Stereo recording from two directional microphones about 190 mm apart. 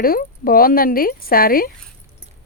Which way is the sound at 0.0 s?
50° left (ahead or behind).